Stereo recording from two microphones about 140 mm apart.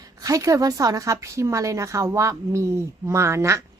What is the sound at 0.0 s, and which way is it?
A woman's voice, 25° right (ahead or behind).